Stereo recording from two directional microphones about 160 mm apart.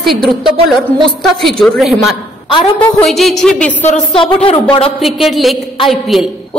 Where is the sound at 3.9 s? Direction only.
35° left (ahead or behind).